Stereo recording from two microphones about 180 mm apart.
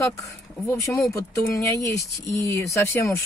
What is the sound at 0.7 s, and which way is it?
Speech, 15° left (ahead or behind).